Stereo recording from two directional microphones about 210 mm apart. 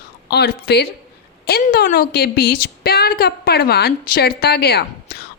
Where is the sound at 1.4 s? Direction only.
45° left (ahead or behind).